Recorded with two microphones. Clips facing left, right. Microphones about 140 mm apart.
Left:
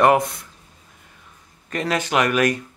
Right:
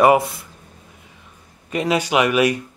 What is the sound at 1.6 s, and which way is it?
Speech, 10° right (ahead or behind).